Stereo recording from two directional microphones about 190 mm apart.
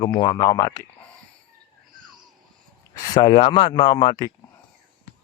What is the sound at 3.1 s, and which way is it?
Speech, 25° left (ahead or behind).